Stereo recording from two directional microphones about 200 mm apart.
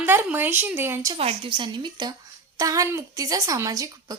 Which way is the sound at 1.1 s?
30° right (ahead or behind).